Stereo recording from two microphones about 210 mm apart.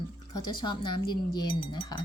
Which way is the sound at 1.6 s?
20° left (ahead or behind).